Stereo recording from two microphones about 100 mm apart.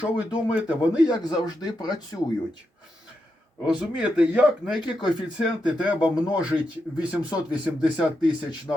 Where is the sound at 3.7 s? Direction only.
10° right (ahead or behind).